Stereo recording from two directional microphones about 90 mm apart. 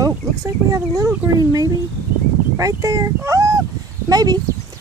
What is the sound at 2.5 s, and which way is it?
Speech, 40° right (ahead or behind).